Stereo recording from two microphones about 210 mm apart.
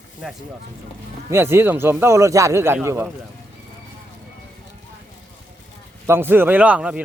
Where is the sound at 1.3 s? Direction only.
10° right (ahead or behind).